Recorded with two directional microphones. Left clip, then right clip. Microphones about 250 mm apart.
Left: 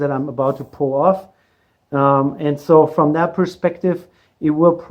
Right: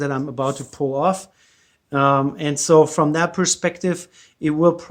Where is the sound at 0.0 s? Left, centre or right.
Right.